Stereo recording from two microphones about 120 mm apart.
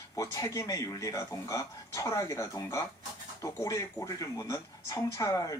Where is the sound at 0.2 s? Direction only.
25° left (ahead or behind).